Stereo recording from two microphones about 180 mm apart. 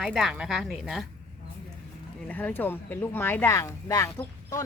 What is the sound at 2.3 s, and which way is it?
Speech, 10° left (ahead or behind).